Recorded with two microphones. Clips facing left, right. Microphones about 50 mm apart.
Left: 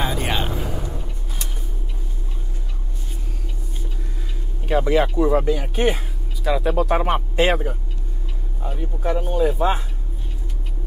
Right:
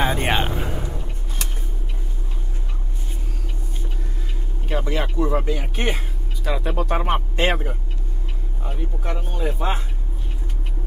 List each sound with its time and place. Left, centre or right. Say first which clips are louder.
0.0 s vehicle: right 3 dB; right
0.6 s a sound: even; right
4.6 s speech: left 7 dB; centre
8.6 s speech: left 5 dB; centre
9.6 s speech: left 5 dB; centre